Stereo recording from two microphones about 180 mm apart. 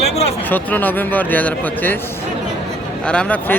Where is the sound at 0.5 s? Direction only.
10° left (ahead or behind).